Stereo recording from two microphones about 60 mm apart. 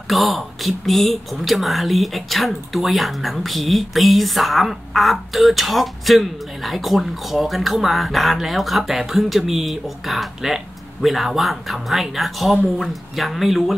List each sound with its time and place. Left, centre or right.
0.1 s speech: centre